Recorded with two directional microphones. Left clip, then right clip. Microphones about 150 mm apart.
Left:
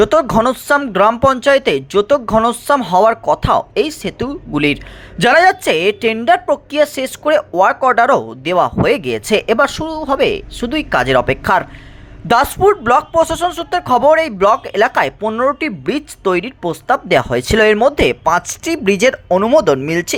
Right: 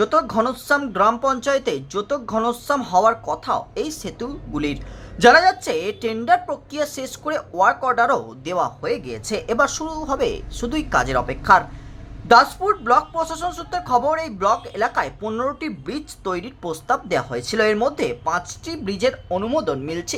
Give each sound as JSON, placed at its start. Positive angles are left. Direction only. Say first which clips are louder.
{"t": 0.0, "sound": "speech", "louder": "left 7 dB", "side_deg": 40}
{"t": 10.9, "sound": "speech", "louder": "left 8 dB", "side_deg": 30}
{"t": 19.5, "sound": "speech", "louder": "left 11 dB", "side_deg": 50}
{"t": 19.8, "sound": "speech", "louder": "left 10 dB", "side_deg": 35}